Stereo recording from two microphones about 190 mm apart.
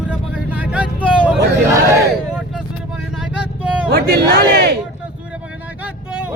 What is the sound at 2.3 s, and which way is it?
Vehicle, centre (ahead or behind).